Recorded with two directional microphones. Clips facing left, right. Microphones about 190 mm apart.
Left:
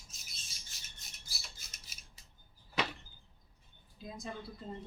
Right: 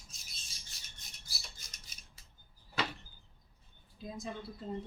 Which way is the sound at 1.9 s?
5° left (ahead or behind).